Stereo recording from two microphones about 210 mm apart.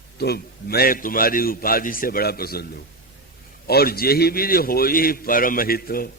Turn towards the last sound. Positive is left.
turn(degrees=45)  # may be behind; listen again after turning